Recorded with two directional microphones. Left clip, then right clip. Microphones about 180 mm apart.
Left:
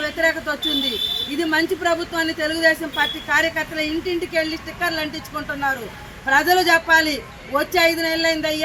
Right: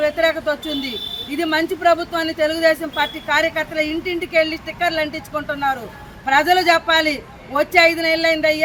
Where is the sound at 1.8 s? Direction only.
10° right (ahead or behind).